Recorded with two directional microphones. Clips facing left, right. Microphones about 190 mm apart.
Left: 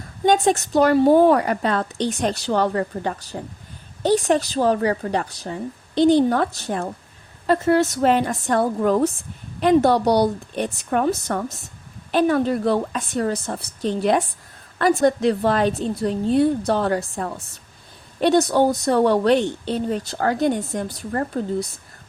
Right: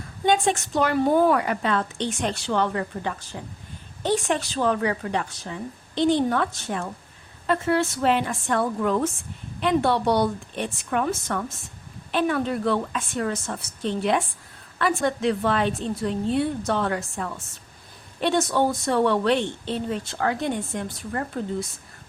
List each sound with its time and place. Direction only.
0.3 s a woman's voice: 40° left (ahead or behind)